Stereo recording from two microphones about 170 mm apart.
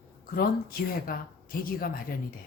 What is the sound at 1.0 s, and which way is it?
Speech, 60° left (ahead or behind).